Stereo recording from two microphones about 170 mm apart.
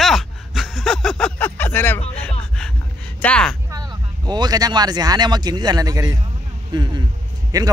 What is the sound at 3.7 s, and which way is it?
Speech, 25° right (ahead or behind).